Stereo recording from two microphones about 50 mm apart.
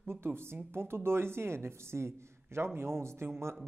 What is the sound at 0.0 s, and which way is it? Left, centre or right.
A woman's voice, right.